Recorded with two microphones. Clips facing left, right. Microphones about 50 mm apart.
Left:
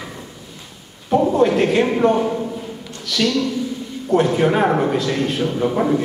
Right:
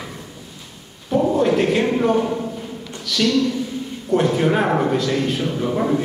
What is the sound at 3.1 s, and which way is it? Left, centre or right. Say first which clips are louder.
Speech: right 1 dB; left.